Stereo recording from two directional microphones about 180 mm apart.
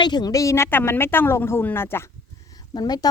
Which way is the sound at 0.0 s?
25° left (ahead or behind).